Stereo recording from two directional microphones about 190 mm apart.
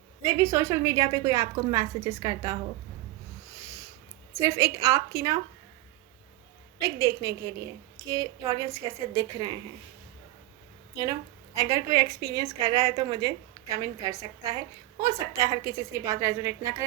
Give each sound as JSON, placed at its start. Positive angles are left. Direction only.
{"t": 0.2, "sound": "a woman's voice", "side_deg": -15}
{"t": 4.4, "sound": "a woman's voice", "side_deg": -15}
{"t": 6.7, "sound": "a woman's voice", "side_deg": -20}
{"t": 11.5, "sound": "a woman's voice", "side_deg": -20}